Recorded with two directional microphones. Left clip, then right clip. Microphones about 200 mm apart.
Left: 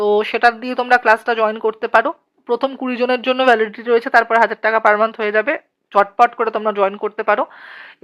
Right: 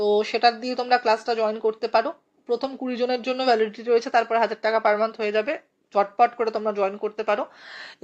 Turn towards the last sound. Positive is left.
turn(degrees=25)  # may be behind; listen again after turning